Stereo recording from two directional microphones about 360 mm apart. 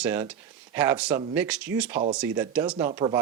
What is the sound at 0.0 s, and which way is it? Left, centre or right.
Speech, centre.